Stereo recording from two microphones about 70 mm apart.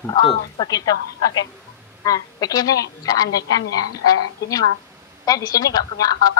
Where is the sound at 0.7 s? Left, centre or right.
Left.